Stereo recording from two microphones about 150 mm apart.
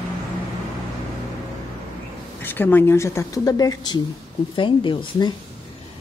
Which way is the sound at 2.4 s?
15° left (ahead or behind).